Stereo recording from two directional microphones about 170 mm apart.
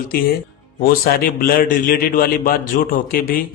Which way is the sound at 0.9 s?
60° left (ahead or behind).